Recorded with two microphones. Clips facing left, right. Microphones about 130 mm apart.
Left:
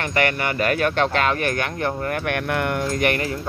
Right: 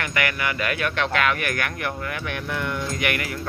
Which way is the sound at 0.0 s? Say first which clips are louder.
Left 4 dB; 35° left (ahead or behind).